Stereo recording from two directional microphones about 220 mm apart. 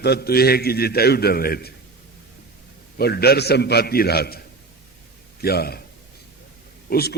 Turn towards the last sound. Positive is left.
turn(degrees=45)  # may be behind; listen again after turning